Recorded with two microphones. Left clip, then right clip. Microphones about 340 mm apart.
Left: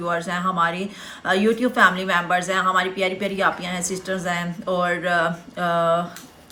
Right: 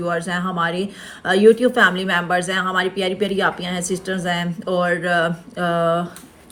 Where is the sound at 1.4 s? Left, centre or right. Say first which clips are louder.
Right 8 dB; centre.